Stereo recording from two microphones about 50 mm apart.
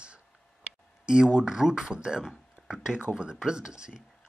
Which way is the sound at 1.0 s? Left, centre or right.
Centre.